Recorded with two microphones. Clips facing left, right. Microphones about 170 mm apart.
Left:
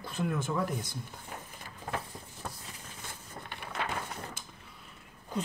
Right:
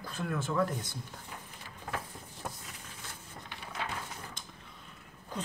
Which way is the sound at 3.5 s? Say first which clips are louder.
Left 3 dB; 60° left (ahead or behind).